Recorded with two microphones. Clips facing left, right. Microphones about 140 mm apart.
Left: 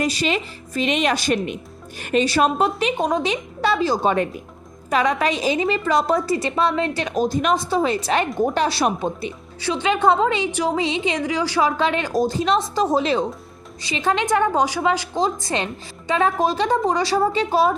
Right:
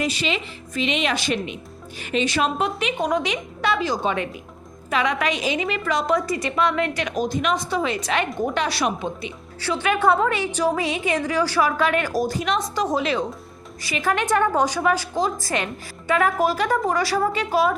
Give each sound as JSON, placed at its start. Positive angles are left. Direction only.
{"t": 0.0, "sound": "a woman's voice", "side_deg": 40}
{"t": 9.6, "sound": "a woman's voice", "side_deg": 15}